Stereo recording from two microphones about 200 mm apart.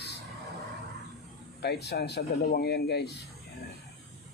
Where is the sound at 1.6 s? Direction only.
55° left (ahead or behind).